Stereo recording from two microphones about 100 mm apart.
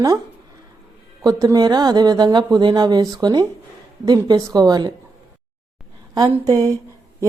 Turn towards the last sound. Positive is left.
turn(degrees=-35)  # may be behind; listen again after turning